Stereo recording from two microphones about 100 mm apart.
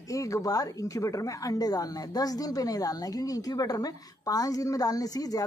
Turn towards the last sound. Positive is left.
turn(degrees=35)  # may be behind; listen again after turning